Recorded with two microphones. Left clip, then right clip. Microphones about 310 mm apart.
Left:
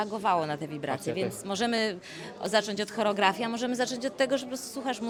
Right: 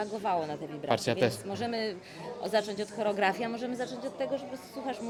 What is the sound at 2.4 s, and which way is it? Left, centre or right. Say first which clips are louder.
Speech: left 3 dB; left.